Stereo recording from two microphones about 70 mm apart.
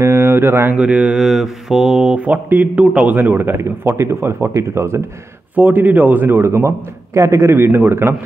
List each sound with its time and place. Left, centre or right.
0.0 s speech: right
0.7 s speech: centre
1.2 s speech: centre; by 5.0 s right
5.6 s speech: right